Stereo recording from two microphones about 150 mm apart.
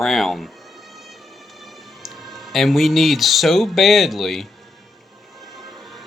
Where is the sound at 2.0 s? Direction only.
Centre (ahead or behind).